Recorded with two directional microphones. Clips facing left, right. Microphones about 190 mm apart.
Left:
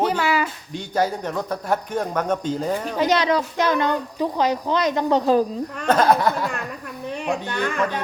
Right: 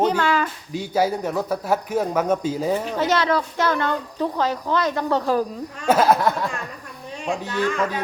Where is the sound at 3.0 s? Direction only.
15° left (ahead or behind).